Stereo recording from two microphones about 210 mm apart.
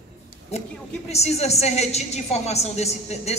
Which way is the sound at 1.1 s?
30° left (ahead or behind).